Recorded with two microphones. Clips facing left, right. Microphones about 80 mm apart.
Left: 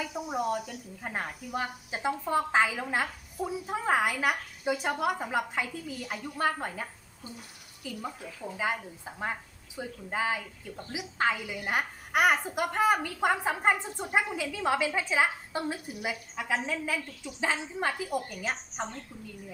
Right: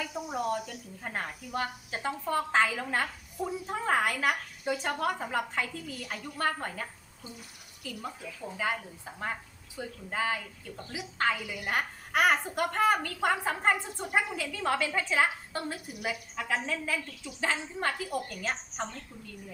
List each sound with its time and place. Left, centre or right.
0.0 s speech: centre